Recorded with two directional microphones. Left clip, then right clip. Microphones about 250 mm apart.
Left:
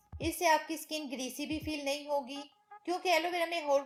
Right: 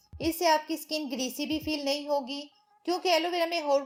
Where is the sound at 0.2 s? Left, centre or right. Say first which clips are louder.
Right 4 dB; centre.